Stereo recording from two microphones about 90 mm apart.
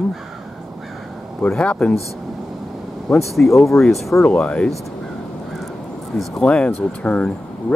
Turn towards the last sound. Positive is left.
turn(degrees=10)  # may be behind; listen again after turning